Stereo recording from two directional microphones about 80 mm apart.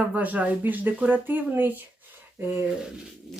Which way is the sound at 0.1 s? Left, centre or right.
Centre.